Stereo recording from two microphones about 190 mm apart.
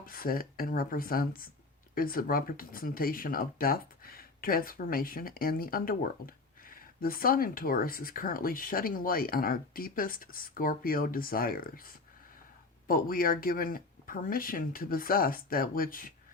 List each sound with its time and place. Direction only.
0.0 s speech: 50° left (ahead or behind)